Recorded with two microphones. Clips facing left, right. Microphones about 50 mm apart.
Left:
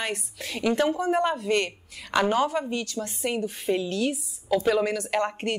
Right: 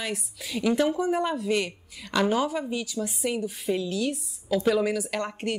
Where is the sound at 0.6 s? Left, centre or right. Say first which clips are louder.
Even; centre.